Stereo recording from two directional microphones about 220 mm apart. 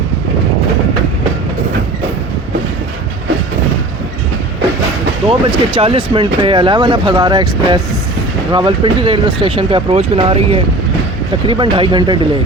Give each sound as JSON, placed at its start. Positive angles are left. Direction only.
{"t": 5.3, "sound": "speech", "side_deg": -25}